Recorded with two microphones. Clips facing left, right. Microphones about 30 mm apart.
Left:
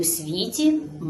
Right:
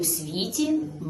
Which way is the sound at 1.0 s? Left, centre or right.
Centre.